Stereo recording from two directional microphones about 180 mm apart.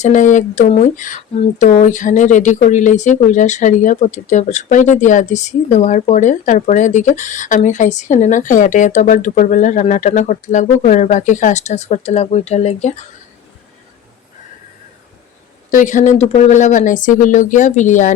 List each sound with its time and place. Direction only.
0.0 s speech: 45° left (ahead or behind)
15.7 s speech: 45° left (ahead or behind)